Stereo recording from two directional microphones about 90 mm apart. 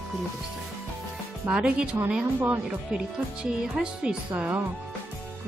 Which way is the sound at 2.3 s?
25° right (ahead or behind).